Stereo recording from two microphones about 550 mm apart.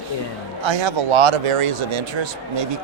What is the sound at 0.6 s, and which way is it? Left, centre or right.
Speech, right.